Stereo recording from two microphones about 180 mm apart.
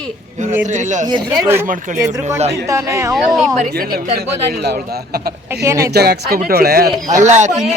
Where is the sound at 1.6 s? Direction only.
45° right (ahead or behind).